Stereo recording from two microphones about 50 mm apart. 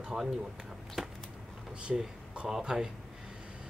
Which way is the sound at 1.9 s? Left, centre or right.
Centre.